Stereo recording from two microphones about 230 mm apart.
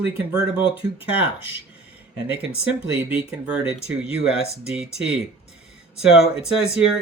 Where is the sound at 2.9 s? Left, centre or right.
Centre.